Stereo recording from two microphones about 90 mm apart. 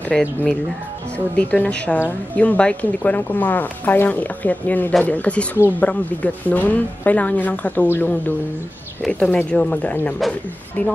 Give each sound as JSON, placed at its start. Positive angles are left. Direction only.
{"t": 0.1, "sound": "a woman's voice", "side_deg": 5}